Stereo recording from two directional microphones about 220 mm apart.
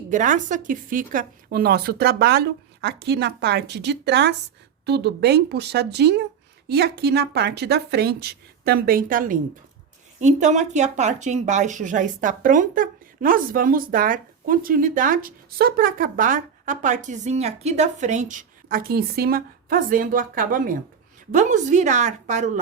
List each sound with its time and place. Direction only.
0.1 s a woman's voice: 35° right (ahead or behind)